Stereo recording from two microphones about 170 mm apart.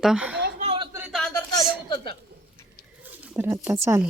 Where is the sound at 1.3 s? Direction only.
20° left (ahead or behind).